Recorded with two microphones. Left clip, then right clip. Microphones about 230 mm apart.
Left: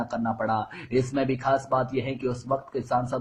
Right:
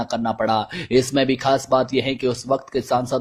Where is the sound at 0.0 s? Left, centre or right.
Right.